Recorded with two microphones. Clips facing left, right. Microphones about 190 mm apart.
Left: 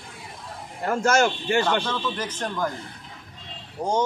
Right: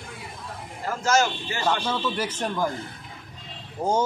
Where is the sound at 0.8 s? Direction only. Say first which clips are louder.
Left 2 dB; 55° left (ahead or behind).